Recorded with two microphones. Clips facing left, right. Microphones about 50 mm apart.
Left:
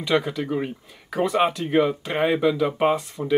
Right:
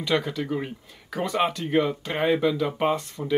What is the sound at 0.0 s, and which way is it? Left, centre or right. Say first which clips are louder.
Speech: left 3 dB; centre.